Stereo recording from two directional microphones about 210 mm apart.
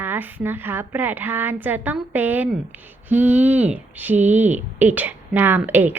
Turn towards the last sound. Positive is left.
turn(degrees=-10)  # may be behind; listen again after turning